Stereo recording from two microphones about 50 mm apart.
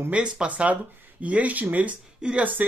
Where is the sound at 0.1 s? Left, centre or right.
Right.